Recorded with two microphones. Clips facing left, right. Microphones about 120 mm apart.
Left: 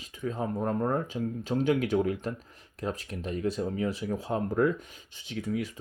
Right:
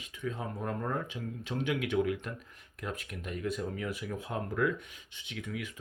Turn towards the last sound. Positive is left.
turn(degrees=35)  # may be behind; listen again after turning